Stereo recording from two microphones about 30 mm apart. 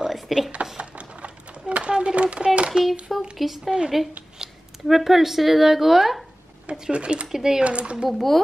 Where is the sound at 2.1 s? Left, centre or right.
Right.